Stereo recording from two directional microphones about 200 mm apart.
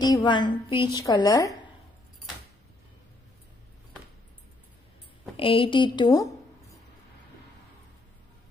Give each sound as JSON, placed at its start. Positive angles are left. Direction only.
{"t": 0.0, "sound": "a woman's voice", "side_deg": 20}
{"t": 5.4, "sound": "a woman's voice", "side_deg": 25}